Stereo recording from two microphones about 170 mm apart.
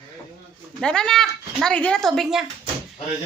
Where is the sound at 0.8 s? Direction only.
5° left (ahead or behind).